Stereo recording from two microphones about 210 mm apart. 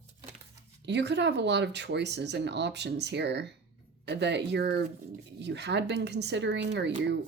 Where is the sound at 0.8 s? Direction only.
55° right (ahead or behind).